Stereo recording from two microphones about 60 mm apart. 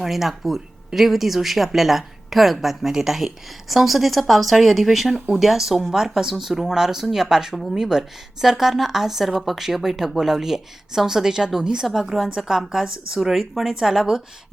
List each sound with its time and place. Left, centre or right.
0.0 s speech: centre